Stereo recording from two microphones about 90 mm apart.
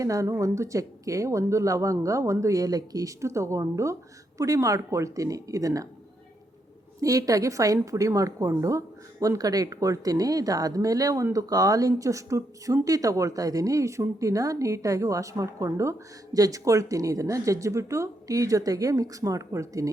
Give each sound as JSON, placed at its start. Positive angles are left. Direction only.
{"t": 0.0, "sound": "speech", "side_deg": -35}
{"t": 7.0, "sound": "speech", "side_deg": -40}